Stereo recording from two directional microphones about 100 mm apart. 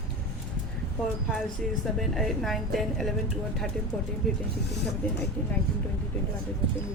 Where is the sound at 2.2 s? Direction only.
Centre (ahead or behind).